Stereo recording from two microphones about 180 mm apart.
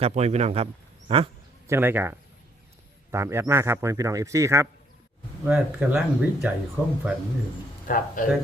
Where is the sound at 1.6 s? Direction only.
15° right (ahead or behind).